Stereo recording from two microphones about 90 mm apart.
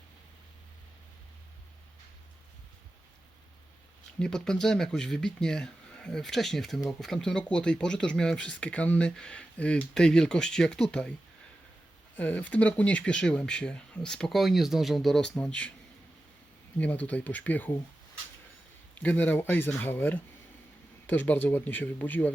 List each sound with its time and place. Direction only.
4.2 s speech: 5° left (ahead or behind)
12.1 s speech: 15° left (ahead or behind)
16.7 s speech: 15° left (ahead or behind)
18.9 s speech: 15° left (ahead or behind)